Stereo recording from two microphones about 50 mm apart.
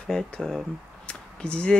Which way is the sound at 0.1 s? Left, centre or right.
Centre.